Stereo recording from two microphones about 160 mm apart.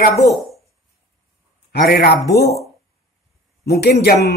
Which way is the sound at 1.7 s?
85° left.